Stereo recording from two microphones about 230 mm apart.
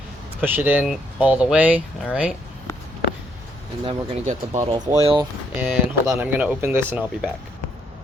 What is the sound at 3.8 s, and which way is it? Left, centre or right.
Speech, right.